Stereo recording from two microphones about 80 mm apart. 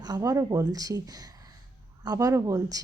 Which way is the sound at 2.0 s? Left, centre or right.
Right.